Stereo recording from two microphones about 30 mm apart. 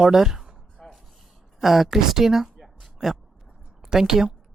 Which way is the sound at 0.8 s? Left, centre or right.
Centre.